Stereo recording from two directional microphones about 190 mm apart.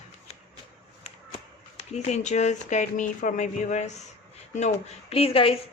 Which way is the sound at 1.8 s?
35° left (ahead or behind).